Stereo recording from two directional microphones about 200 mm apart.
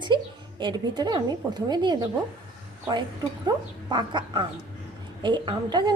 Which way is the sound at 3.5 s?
20° right (ahead or behind).